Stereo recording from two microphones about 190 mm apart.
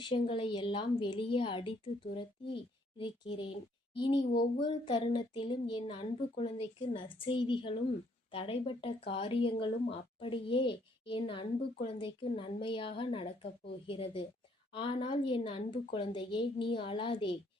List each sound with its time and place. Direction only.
0.0 s a woman's voice: 30° left (ahead or behind)
3.0 s a woman's voice: 25° left (ahead or behind)